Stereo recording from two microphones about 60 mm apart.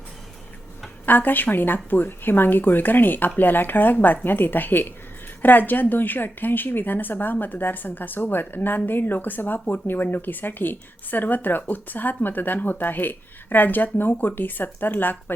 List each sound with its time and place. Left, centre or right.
1.0 s a woman's voice: left